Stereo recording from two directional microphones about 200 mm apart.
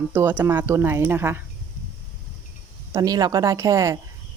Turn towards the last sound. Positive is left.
turn(degrees=-15)  # may be behind; listen again after turning